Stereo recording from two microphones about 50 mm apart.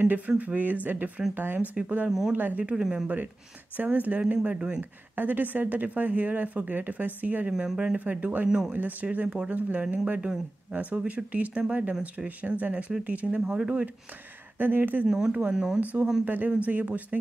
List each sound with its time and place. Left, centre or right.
0.4 s speech: right
2.0 s speech: centre
2.3 s speech: right
2.7 s speech: centre
3.7 s speech: right
5.1 s speech: right
7.5 s speech: centre
8.5 s speech: centre
8.7 s speech: right
14.6 s speech: right
15.0 s speech: centre
15.8 s speech: right